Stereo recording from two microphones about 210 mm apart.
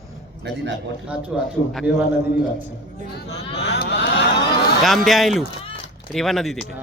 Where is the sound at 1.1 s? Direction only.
5° right (ahead or behind).